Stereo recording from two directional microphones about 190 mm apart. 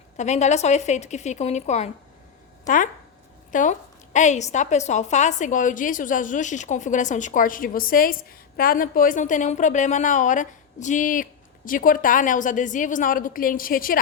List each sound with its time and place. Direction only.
0.2 s a woman's voice: 35° left (ahead or behind)